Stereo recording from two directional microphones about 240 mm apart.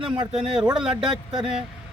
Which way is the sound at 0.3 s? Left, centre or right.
Centre.